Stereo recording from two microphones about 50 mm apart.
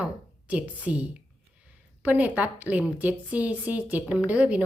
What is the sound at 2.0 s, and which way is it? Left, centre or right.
A woman's voice, right.